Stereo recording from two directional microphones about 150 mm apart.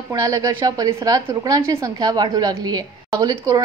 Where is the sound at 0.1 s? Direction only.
25° right (ahead or behind).